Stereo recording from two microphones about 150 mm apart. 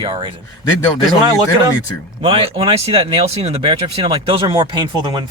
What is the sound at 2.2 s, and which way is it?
Speech, 40° right (ahead or behind).